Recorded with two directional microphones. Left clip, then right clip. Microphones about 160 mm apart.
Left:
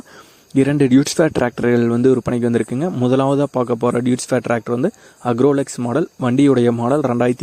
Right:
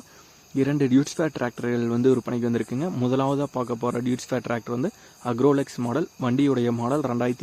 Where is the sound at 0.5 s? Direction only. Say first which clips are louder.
Left 8 dB; 50° left (ahead or behind).